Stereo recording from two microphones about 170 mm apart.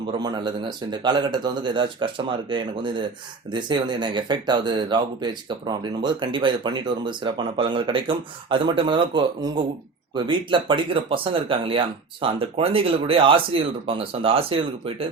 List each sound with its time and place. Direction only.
0.1 s speech: 25° right (ahead or behind)